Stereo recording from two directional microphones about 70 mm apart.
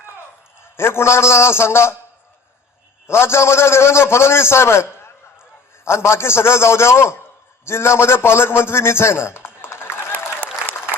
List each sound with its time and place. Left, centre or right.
0.6 s a man's voice: left
3.1 s a man's voice: left